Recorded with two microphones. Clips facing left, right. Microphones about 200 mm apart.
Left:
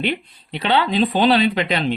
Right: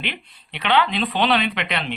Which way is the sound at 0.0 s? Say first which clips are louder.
Left 9 dB; 40° left (ahead or behind).